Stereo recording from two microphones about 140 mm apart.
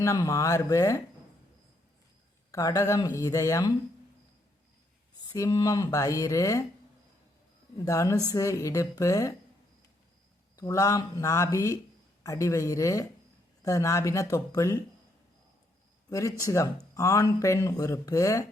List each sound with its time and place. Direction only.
0.0 s speech: 20° left (ahead or behind)
2.5 s speech: 25° left (ahead or behind)
5.3 s speech: 25° left (ahead or behind)
7.9 s speech: 25° left (ahead or behind)
10.6 s speech: 25° left (ahead or behind)
16.0 s speech: 20° left (ahead or behind)